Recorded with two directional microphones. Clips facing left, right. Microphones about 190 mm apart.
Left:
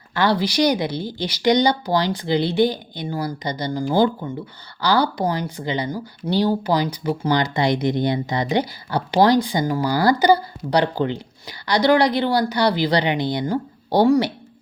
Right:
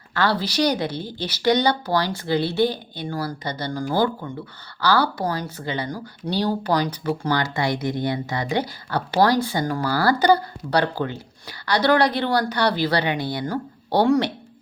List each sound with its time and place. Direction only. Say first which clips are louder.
0.1 s speech: left 3 dB; 15° left (ahead or behind)